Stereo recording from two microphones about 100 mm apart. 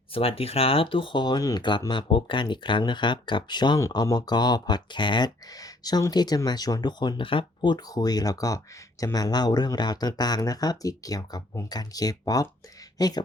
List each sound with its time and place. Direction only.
0.1 s speech: 75° left (ahead or behind); by 1.6 s 40° left (ahead or behind)
1.9 s speech: 55° left (ahead or behind)